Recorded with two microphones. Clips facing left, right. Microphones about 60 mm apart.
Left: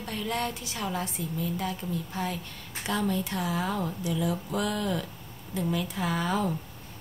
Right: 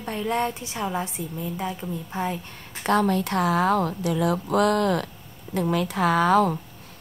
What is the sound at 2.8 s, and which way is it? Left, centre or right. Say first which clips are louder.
A woman's voice: right 8 dB; right.